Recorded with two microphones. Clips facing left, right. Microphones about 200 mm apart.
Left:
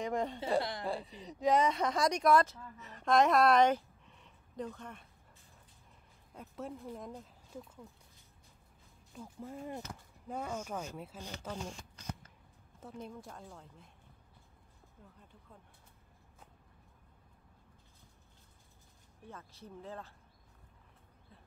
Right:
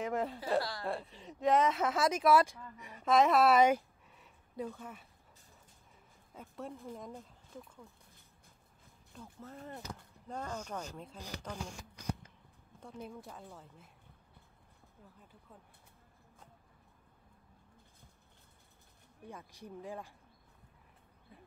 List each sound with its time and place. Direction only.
0.0 s speech: 5° right (ahead or behind)
0.6 s speech: 20° left (ahead or behind)
0.8 s speech: centre (ahead or behind)
6.3 s speech: centre (ahead or behind)
9.1 s speech: 10° left (ahead or behind)
13.0 s speech: 5° right (ahead or behind)
19.2 s speech: 15° right (ahead or behind)